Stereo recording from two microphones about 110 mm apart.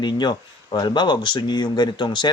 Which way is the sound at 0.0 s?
40° left (ahead or behind).